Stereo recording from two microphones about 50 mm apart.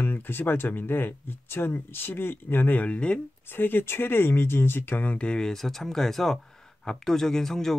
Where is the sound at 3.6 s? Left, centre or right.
Left.